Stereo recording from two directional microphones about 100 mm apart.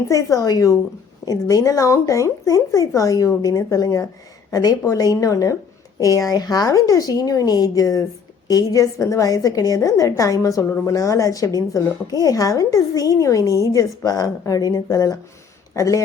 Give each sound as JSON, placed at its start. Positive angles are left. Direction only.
{"t": 0.1, "sound": "a woman's voice", "side_deg": 35}